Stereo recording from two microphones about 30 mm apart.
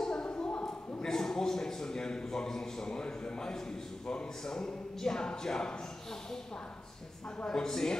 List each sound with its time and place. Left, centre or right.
0.0 s a sound: left
1.0 s a man's voice: centre
7.4 s speech: left